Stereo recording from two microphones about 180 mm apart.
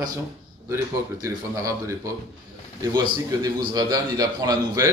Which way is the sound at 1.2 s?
15° right (ahead or behind).